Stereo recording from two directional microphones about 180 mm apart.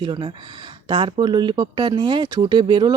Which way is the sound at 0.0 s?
25° right (ahead or behind).